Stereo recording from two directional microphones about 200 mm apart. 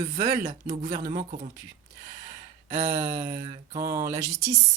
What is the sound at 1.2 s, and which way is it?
Mantra, 35° right (ahead or behind).